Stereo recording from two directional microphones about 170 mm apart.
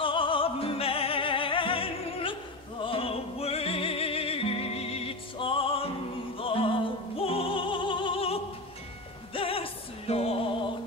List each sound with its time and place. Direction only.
0.0 s music: 30° left (ahead or behind)